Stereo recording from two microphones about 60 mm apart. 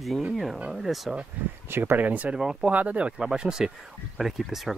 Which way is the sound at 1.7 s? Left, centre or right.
Right.